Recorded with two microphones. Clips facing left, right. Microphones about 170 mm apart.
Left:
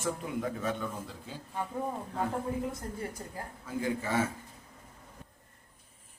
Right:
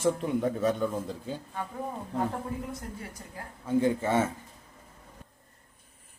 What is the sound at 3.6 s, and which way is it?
Speech, 25° right (ahead or behind).